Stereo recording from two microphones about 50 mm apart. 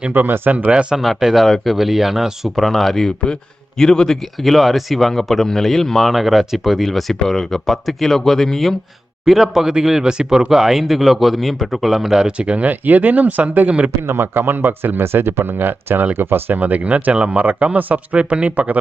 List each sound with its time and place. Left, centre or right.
0.1 s speech: right
0.7 s speech: centre
0.9 s speech: centre
12.4 s speech: right
14.1 s speech: right
16.6 s speech: right